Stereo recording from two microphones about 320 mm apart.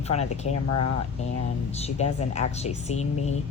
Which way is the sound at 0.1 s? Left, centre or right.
Centre.